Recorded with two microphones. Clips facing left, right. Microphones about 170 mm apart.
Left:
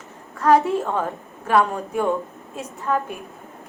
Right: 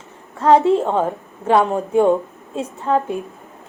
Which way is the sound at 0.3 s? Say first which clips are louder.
Right 4 dB; 25° right (ahead or behind).